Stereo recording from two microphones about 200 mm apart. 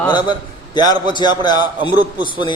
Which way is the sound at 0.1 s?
25° left (ahead or behind).